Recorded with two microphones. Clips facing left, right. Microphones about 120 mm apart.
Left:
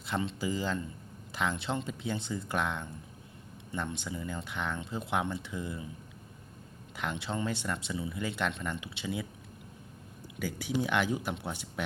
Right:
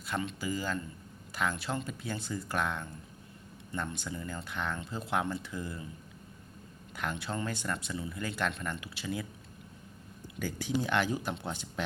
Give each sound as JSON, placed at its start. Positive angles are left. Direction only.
{"t": 0.0, "sound": "speech", "side_deg": 25}
{"t": 6.9, "sound": "speech", "side_deg": 20}
{"t": 10.4, "sound": "speech", "side_deg": 10}